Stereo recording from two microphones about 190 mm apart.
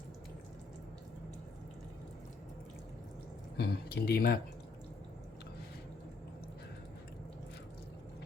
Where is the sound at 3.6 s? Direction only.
55° left (ahead or behind).